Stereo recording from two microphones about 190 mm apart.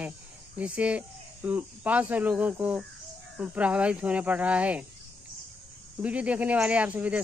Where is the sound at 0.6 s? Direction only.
5° right (ahead or behind).